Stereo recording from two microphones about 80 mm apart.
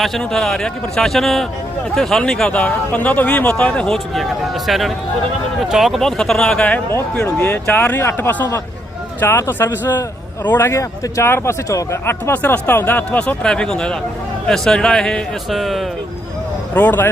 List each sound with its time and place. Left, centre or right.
0.0 s a man's voice: centre; by 12.3 s left
12.3 s speech: left
13.1 s a man's voice: centre
16.7 s speech: left